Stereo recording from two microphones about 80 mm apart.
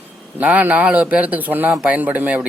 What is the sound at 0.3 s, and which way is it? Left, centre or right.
A man's voice, centre.